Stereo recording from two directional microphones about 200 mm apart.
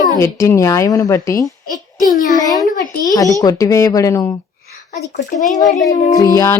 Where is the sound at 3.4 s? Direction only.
15° left (ahead or behind).